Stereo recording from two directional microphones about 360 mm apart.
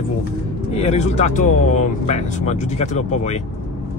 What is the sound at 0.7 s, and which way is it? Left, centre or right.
Speech, centre.